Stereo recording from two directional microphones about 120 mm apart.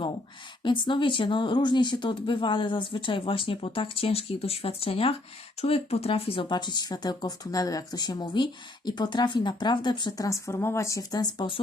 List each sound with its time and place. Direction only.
0.6 s speech: 40° left (ahead or behind)